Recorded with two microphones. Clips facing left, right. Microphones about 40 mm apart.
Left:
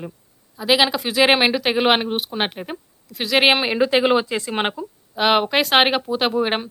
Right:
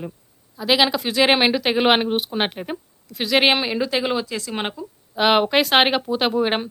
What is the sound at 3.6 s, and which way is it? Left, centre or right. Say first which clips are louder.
A woman's voice: left 5 dB; left.